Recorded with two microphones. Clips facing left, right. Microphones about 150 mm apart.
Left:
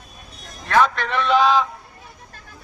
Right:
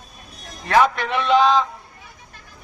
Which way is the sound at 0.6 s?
20° right (ahead or behind).